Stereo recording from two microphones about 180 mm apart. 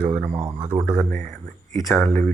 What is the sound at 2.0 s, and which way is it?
Speech, 10° left (ahead or behind).